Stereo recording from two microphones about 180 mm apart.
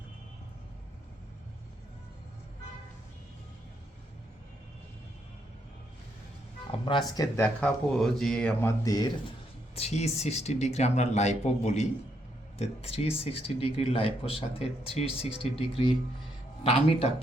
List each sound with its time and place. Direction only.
6.7 s speech: 30° left (ahead or behind)
7.4 s speech: 5° left (ahead or behind)
8.8 s speech: 20° left (ahead or behind)
9.7 s speech: 35° left (ahead or behind)